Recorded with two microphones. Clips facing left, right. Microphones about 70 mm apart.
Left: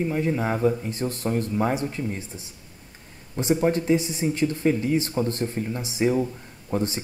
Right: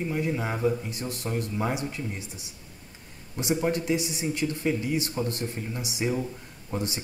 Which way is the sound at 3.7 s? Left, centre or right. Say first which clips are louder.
Left 5 dB; left.